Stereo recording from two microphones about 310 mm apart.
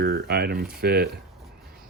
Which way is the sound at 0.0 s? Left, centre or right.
Right.